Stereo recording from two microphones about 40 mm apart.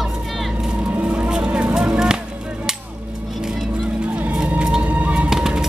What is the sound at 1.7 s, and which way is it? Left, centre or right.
Music, right.